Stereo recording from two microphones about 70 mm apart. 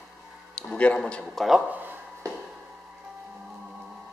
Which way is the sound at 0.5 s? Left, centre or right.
Centre.